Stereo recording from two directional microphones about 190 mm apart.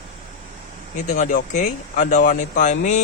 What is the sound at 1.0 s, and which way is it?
Speech, 40° left (ahead or behind).